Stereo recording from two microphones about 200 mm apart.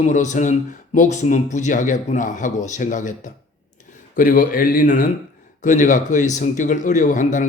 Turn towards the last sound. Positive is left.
turn(degrees=40)  # may be behind; listen again after turning